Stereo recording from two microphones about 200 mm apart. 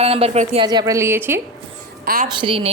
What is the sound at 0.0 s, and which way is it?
A woman's voice, 30° right (ahead or behind).